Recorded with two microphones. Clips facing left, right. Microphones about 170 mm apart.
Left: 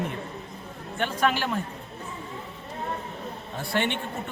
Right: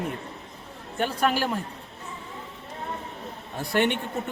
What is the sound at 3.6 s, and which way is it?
Speech, 45° right (ahead or behind).